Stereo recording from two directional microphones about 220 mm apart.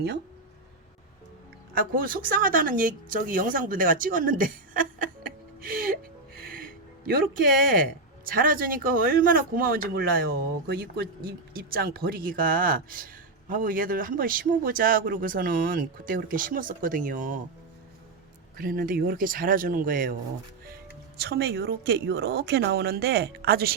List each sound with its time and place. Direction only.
1.7 s speech: 40° right (ahead or behind)
6.4 s music: 40° right (ahead or behind)
8.2 s speech: 40° right (ahead or behind)
18.5 s speech: 40° right (ahead or behind)
21.2 s speech: 45° right (ahead or behind)